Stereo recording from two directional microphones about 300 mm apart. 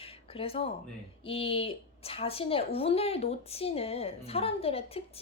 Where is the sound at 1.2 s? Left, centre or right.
Centre.